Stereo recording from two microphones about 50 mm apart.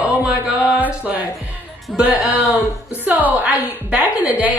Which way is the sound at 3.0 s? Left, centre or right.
Right.